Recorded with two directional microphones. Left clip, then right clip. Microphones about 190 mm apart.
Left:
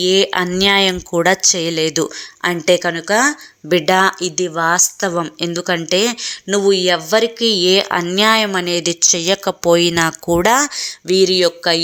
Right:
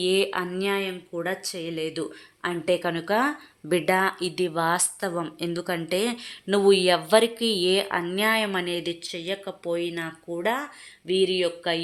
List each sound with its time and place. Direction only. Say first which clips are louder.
0.0 s speech: left 9 dB; 20° left (ahead or behind)